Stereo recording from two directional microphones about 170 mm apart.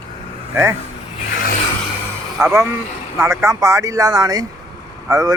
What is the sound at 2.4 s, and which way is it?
Speech, 15° right (ahead or behind).